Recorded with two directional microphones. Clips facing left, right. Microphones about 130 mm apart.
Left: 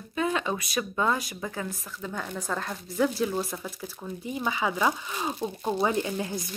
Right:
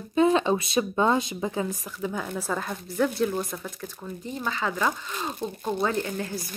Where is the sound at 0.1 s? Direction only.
30° right (ahead or behind).